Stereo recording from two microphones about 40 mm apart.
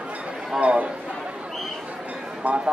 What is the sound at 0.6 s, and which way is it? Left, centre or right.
Speech, right.